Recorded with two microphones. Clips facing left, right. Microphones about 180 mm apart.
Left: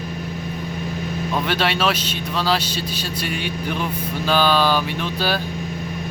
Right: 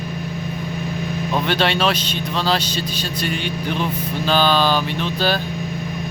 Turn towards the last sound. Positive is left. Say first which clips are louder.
# right 2 dB
turn(degrees=5)  # may be behind; listen again after turning